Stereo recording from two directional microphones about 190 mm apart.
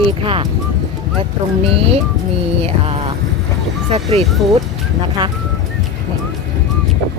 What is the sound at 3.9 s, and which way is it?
Speech, 30° right (ahead or behind).